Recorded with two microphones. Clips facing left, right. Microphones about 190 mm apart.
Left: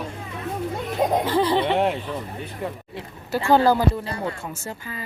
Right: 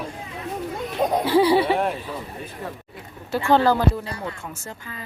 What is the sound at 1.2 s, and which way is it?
Speech, 10° right (ahead or behind).